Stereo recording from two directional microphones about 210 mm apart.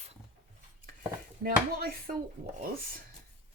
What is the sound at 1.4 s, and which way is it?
Speech, 45° right (ahead or behind).